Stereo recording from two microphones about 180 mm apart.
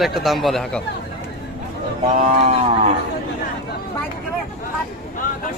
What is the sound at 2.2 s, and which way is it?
Speech, 40° right (ahead or behind).